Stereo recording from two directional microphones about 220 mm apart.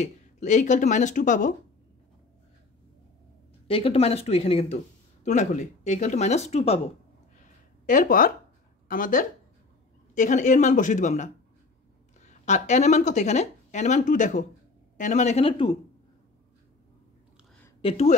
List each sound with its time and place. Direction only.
0.0 s speech: 30° left (ahead or behind)
3.6 s speech: 25° left (ahead or behind)
7.3 s a sound: 35° left (ahead or behind)
8.8 s speech: 40° left (ahead or behind); by 15.7 s 25° left (ahead or behind)
17.8 s speech: 30° left (ahead or behind)